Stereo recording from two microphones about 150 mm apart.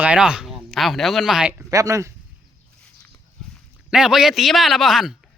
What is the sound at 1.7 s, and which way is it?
Speech, 20° right (ahead or behind).